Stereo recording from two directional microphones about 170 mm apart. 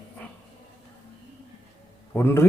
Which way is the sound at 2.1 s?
15° left (ahead or behind).